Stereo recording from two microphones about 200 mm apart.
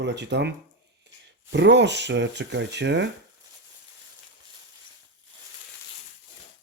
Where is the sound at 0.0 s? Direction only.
60° right (ahead or behind).